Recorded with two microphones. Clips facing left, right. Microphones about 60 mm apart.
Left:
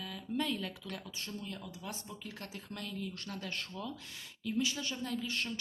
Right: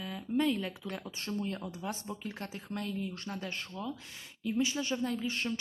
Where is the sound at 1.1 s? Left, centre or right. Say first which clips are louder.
Right 7 dB; right.